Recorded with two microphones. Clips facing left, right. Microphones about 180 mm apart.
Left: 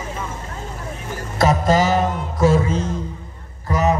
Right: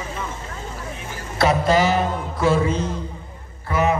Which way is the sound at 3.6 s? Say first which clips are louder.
Left 1 dB; 40° left (ahead or behind).